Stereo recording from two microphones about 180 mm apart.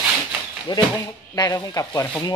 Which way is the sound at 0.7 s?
25° left (ahead or behind).